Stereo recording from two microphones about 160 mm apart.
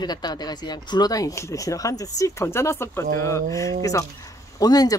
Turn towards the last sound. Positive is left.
turn(degrees=25)  # may be behind; listen again after turning